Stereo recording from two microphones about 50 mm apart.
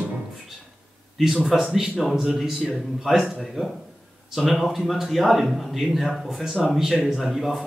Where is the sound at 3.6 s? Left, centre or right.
Centre.